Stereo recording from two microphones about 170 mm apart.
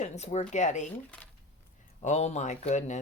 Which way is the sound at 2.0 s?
40° left (ahead or behind).